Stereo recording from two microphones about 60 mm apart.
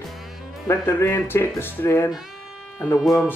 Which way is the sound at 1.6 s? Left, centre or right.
Left.